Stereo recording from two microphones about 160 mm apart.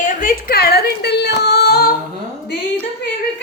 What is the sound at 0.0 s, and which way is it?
Yodeling, 60° left (ahead or behind).